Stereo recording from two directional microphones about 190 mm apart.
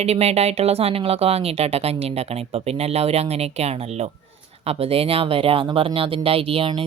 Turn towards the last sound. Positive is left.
turn(degrees=-30)  # may be behind; listen again after turning